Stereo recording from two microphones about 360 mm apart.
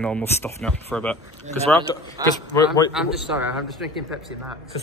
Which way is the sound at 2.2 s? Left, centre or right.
Centre.